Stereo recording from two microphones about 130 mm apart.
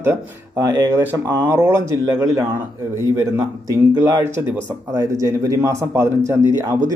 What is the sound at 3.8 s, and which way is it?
Speech, 25° right (ahead or behind).